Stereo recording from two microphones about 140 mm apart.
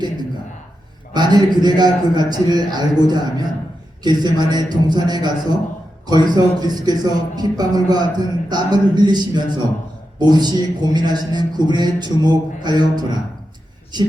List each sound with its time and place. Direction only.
1.1 s a man's voice: 30° right (ahead or behind)